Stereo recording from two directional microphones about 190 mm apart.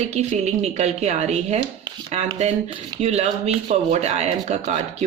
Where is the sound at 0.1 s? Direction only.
35° right (ahead or behind).